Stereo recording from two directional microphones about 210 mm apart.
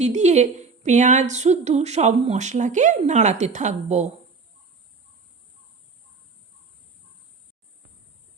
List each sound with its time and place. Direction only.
0.0 s a woman's voice: 35° right (ahead or behind)